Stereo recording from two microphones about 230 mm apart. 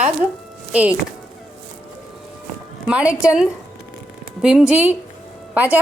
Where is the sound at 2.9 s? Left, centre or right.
Centre.